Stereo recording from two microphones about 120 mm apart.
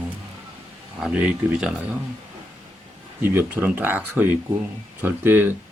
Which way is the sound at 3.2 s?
20° right (ahead or behind).